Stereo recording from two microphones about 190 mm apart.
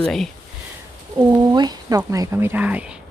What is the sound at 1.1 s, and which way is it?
Speech, 20° right (ahead or behind).